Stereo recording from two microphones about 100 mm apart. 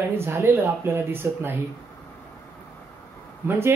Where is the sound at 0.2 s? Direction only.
25° right (ahead or behind).